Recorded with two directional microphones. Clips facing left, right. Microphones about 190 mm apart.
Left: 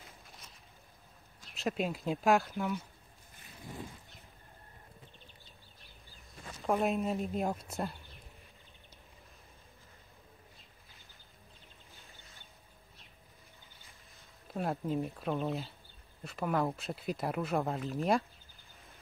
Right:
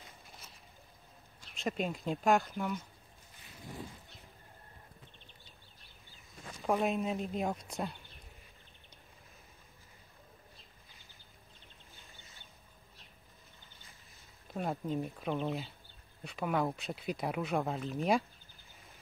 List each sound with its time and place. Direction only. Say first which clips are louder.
0.0 s boat: even; centre (ahead or behind)
1.5 s speech: left 1 dB; centre (ahead or behind)
6.6 s speech: left 1 dB; centre (ahead or behind)
14.5 s speech: left 1 dB; centre (ahead or behind)